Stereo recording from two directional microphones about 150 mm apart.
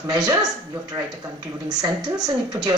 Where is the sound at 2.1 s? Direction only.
25° right (ahead or behind).